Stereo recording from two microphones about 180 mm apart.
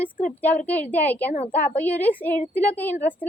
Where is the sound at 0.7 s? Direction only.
10° left (ahead or behind).